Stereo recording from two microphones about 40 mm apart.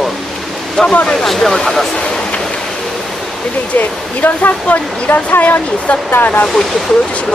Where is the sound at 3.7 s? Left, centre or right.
Left.